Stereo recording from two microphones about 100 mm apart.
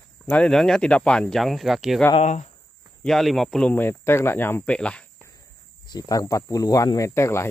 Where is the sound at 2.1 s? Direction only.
90° left.